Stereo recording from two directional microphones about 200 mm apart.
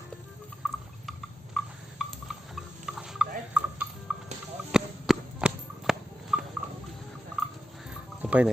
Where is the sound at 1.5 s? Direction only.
Centre (ahead or behind).